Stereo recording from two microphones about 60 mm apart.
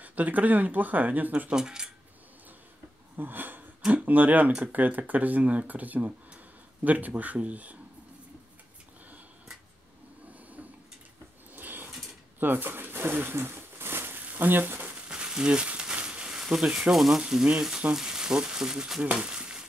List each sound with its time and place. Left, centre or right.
0.0 s speech: right
1.5 s speech: centre
3.2 s speech: right
11.5 s a sound: right
15.0 s a sound: centre
16.9 s speech: centre
19.1 s crumpling: centre